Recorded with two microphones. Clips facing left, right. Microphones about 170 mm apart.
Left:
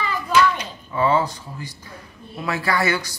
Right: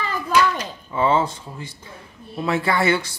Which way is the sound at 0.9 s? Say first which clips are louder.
Even; 25° right (ahead or behind).